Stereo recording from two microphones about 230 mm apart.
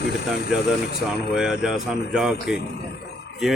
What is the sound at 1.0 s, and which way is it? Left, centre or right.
Speech, centre.